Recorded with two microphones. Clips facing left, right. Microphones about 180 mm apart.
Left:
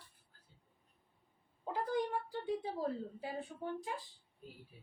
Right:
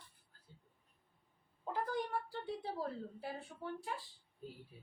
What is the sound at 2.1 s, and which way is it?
Speech, 15° left (ahead or behind).